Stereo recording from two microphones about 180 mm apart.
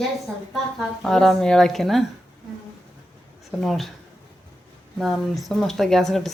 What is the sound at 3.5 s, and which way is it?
Speech, centre (ahead or behind).